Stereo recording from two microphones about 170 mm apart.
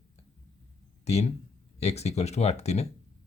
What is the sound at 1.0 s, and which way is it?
Speech, 40° left (ahead or behind).